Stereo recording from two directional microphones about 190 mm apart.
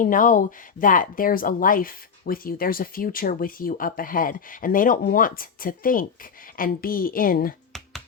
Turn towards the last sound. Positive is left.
turn(degrees=50)  # may be behind; listen again after turning